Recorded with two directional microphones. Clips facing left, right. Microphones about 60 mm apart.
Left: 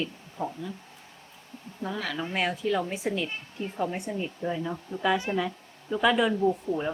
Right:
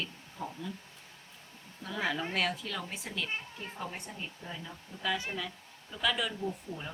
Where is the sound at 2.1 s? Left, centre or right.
Centre.